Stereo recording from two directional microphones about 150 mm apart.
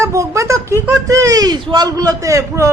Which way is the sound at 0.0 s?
20° right (ahead or behind).